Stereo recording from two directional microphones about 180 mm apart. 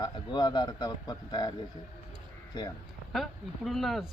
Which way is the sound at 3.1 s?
Centre (ahead or behind).